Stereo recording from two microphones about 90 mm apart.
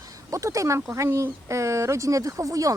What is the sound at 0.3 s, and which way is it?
Speech, 35° right (ahead or behind).